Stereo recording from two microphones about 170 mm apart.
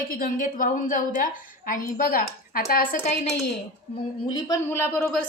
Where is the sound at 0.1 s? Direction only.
55° left (ahead or behind).